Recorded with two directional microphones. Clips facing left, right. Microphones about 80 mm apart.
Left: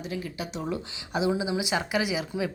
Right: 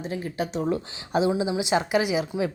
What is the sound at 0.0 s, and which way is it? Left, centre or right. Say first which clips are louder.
A woman's voice: right 5 dB; right.